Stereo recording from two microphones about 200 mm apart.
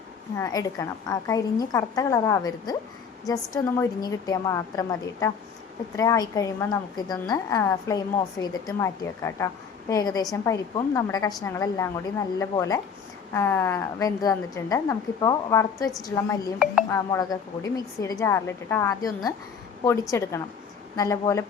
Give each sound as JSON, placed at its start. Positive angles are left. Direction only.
{"t": 0.3, "sound": "a woman's voice", "side_deg": 15}